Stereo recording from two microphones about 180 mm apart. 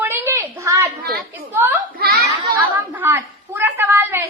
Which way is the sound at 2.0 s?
60° right (ahead or behind).